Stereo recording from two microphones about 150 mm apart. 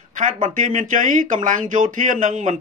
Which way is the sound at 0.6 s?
60° right (ahead or behind).